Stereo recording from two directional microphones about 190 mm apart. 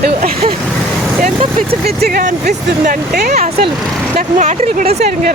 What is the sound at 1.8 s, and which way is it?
Speech, 55° right (ahead or behind).